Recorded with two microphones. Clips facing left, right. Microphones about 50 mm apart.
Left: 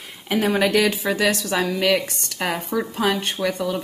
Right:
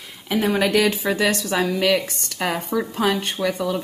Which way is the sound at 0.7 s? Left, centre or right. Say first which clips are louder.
Even; centre.